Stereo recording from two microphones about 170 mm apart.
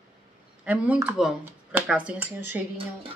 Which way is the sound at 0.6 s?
10° right (ahead or behind).